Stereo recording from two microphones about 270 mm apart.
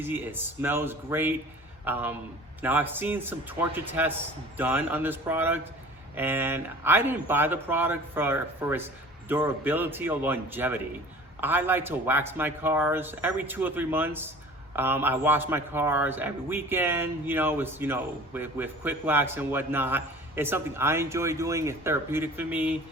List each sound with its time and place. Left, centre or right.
0.0 s a man's voice: centre